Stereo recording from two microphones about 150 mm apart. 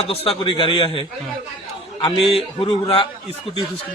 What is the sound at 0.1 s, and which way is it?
A man's voice, 40° left (ahead or behind).